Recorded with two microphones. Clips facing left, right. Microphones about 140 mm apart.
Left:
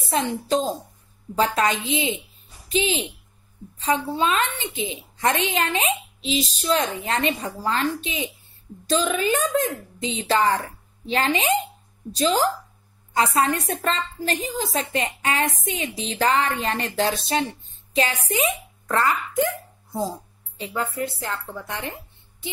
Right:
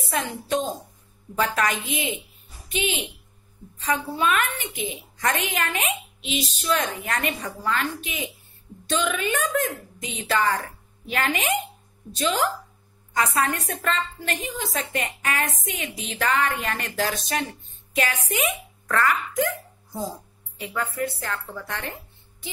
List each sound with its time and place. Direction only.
0.1 s a woman's voice: 30° left (ahead or behind)